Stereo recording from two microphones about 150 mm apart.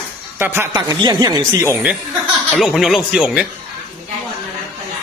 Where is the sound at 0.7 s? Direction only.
30° right (ahead or behind).